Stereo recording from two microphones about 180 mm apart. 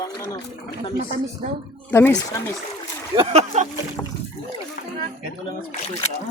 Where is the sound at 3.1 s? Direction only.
40° right (ahead or behind).